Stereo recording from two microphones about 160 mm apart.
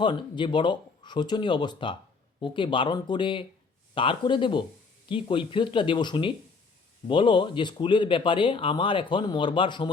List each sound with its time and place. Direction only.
0.0 s speech: 30° left (ahead or behind)